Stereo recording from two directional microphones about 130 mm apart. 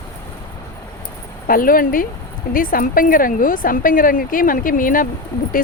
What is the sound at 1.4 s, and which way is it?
Speech, 90° left.